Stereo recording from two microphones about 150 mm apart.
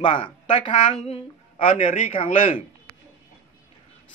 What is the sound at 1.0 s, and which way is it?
Speech, 45° left (ahead or behind).